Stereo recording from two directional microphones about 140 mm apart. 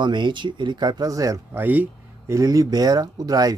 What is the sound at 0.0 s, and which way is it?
Speech, 35° right (ahead or behind).